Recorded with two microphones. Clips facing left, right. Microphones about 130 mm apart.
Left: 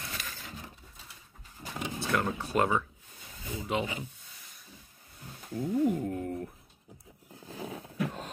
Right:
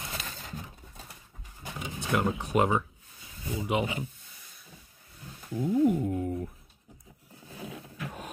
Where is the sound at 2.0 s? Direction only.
15° right (ahead or behind).